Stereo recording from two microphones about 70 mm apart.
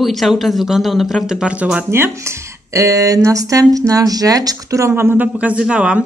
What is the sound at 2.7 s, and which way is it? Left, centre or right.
Speech, right.